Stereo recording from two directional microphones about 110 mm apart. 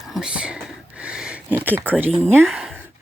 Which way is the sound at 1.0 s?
10° right (ahead or behind).